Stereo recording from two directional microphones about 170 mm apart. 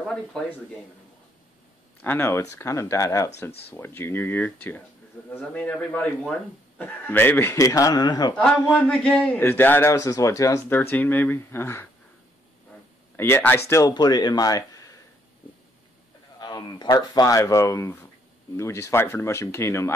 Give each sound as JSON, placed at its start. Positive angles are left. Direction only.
{"t": 0.0, "sound": "speech", "side_deg": 5}
{"t": 2.0, "sound": "a man's voice", "side_deg": 10}
{"t": 8.6, "sound": "a man's voice", "side_deg": 10}
{"t": 13.1, "sound": "speech", "side_deg": 15}
{"t": 16.3, "sound": "a man's voice", "side_deg": 25}